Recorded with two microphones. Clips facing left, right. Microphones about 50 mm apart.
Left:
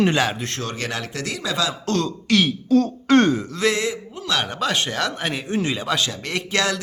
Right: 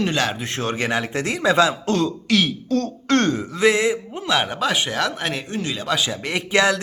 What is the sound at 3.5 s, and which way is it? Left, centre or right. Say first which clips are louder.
Speech: right 4 dB; centre.